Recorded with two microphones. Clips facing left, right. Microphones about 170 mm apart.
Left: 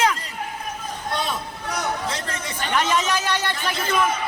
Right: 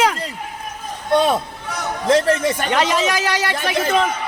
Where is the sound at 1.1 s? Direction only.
65° right (ahead or behind).